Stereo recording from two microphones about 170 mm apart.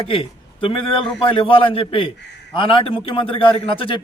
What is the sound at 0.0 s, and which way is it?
A man's voice, 30° left (ahead or behind).